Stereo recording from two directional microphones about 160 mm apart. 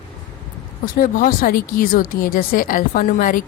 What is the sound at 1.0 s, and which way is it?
Speech, 60° left (ahead or behind).